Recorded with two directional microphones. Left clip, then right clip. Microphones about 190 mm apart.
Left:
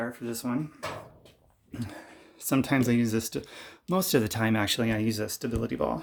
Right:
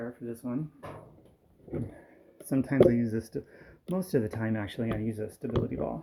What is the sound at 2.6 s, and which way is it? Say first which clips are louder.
Speech: right 7 dB; 25° left (ahead or behind).